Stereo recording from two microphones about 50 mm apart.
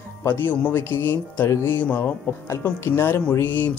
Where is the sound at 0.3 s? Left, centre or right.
Left.